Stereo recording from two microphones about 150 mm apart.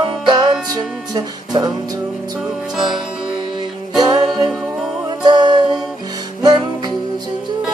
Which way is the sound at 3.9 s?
30° right (ahead or behind).